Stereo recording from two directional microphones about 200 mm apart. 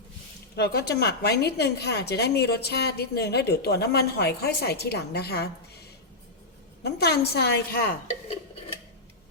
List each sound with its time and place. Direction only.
0.5 s a woman's voice: 55° left (ahead or behind)
6.8 s a woman's voice: 55° left (ahead or behind)